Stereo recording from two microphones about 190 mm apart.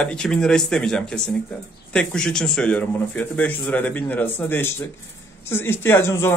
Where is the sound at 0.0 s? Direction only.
5° left (ahead or behind).